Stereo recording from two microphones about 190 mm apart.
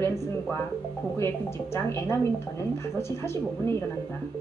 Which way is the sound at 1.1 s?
15° left (ahead or behind).